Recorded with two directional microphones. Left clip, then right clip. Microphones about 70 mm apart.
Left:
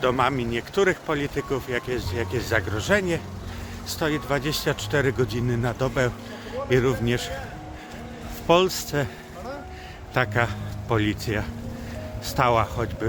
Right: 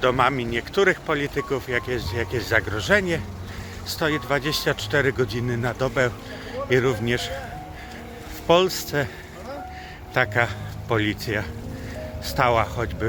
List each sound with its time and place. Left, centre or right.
0.0 s speech: left
1.4 s speech: left
4.0 s speech: left
8.4 s speech: left
10.2 s speech: left
12.2 s speech: left